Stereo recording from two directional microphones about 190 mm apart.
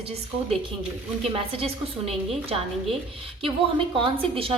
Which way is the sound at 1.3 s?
30° right (ahead or behind).